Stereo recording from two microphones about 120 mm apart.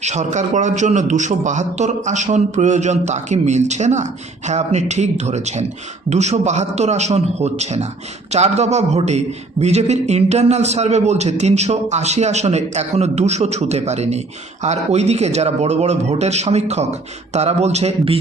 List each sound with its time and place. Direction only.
0.0 s a man's voice: 75° right (ahead or behind); by 18.2 s 60° right (ahead or behind)